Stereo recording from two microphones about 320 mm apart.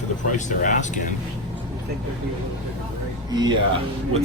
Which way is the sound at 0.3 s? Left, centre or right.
Left.